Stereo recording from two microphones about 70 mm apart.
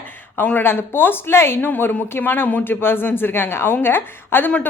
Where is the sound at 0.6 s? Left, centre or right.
Left.